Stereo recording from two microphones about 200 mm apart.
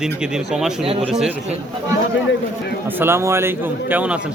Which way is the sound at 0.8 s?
30° right (ahead or behind).